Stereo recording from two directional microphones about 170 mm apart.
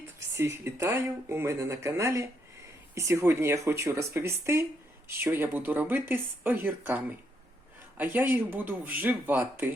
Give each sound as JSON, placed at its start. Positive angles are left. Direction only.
{"t": 0.3, "sound": "speech", "side_deg": -15}